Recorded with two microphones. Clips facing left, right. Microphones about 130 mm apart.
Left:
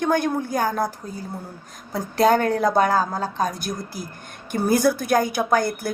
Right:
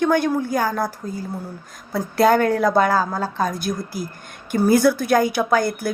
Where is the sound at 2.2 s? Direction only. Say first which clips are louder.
Right 2 dB; 40° left (ahead or behind).